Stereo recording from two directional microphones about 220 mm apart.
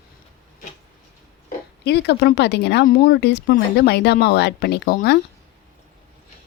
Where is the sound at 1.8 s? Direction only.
50° left (ahead or behind).